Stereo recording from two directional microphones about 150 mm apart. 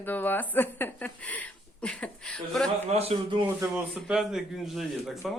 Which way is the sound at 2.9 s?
40° right (ahead or behind).